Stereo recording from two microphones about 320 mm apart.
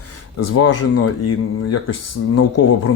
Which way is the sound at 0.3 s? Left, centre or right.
Left.